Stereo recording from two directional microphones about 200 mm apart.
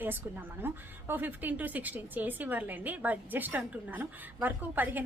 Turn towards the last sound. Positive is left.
turn(degrees=-10)  # may be behind; listen again after turning